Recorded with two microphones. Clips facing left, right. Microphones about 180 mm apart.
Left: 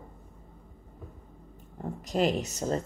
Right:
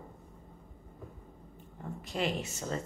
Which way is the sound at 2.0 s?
40° left (ahead or behind).